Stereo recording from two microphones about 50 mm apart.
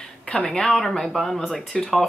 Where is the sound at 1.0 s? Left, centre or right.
Centre.